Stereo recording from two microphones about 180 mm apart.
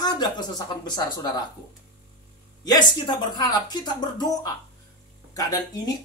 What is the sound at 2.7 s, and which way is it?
Speech, 25° left (ahead or behind).